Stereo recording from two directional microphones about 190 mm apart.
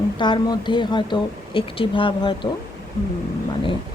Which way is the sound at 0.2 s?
25° left (ahead or behind).